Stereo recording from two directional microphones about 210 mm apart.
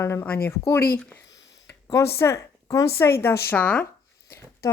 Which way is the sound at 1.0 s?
5° left (ahead or behind).